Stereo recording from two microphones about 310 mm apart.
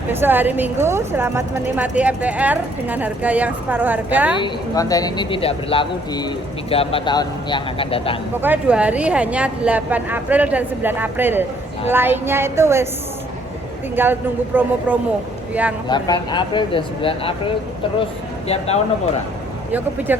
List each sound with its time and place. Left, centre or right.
0.1 s a woman's voice: centre
4.4 s speech: centre
8.4 s a woman's voice: centre
13.9 s a woman's voice: centre
15.9 s speech: centre
20.1 s speech: centre